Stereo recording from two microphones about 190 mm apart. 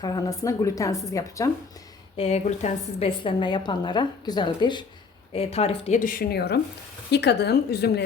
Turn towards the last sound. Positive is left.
turn(degrees=60)  # may be behind; listen again after turning